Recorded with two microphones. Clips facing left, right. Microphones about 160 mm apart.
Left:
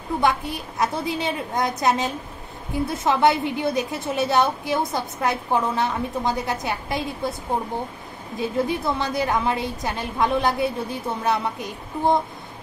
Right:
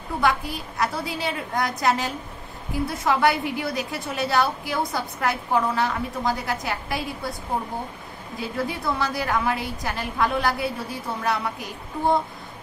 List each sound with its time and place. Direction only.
0.2 s a woman's voice: 20° left (ahead or behind)
8.4 s a woman's voice: 20° left (ahead or behind)